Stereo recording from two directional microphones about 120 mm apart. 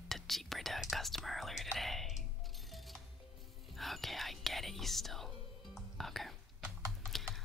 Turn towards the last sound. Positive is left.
turn(degrees=5)  # may be behind; listen again after turning